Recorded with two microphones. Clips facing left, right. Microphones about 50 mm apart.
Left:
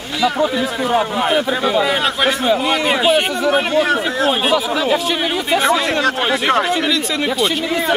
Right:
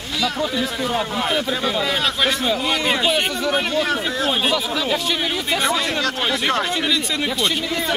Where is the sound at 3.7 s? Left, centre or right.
Left.